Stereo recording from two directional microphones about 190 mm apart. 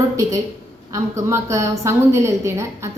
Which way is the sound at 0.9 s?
15° right (ahead or behind).